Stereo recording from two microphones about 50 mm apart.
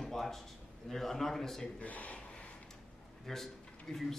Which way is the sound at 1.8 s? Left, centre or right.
Left.